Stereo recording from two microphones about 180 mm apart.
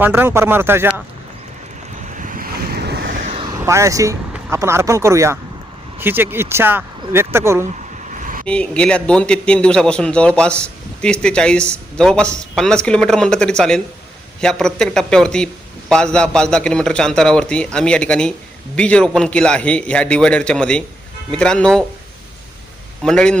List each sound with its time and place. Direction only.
0.0 s speech: 10° right (ahead or behind)
2.1 s waves: 45° right (ahead or behind); by 3.1 s 65° right (ahead or behind)
3.2 s vehicle: 40° right (ahead or behind)
3.6 s speech: 15° right (ahead or behind)
8.1 s vehicle: 45° right (ahead or behind)
8.4 s speech: 5° left (ahead or behind)
23.0 s speech: 5° left (ahead or behind)